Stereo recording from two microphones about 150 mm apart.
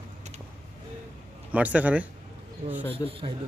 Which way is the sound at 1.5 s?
10° right (ahead or behind).